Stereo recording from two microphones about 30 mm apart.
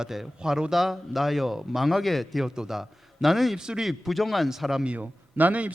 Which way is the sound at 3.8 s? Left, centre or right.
Centre.